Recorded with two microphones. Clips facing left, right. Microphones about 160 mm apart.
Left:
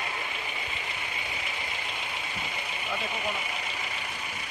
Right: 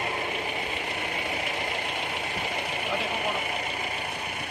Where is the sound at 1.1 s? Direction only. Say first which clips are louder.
Right 6 dB; 55° right (ahead or behind).